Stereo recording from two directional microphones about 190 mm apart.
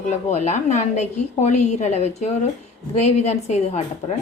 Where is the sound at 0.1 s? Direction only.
35° left (ahead or behind).